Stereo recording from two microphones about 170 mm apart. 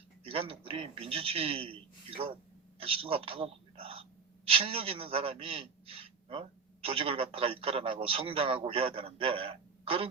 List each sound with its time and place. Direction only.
0.3 s a man's voice: 35° right (ahead or behind)